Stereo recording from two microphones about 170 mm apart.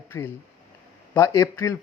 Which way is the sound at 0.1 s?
15° left (ahead or behind).